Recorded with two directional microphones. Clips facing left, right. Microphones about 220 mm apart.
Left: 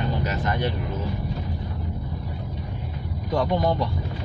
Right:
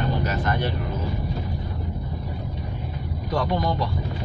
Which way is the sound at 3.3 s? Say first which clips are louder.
Left 2 dB; 20° left (ahead or behind).